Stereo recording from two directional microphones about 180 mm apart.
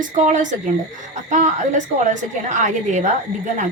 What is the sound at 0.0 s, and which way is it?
A woman's voice, 45° right (ahead or behind).